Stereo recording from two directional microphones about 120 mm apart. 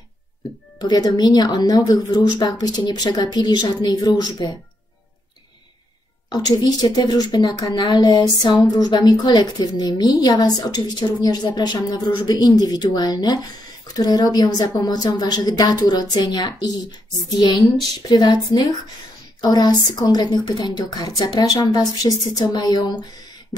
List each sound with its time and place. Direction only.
0.7 s a woman's voice: 35° left (ahead or behind)
6.3 s a woman's voice: 35° left (ahead or behind)